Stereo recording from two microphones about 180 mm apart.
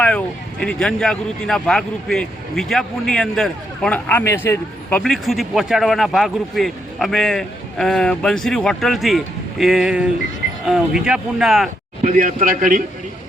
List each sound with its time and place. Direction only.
0.6 s speech: 5° left (ahead or behind)
12.0 s a man's voice: 45° right (ahead or behind)